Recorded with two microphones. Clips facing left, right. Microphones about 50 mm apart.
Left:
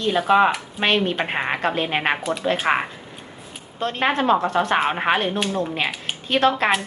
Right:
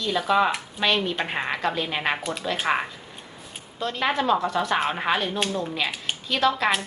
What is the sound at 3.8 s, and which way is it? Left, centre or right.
Speech, left.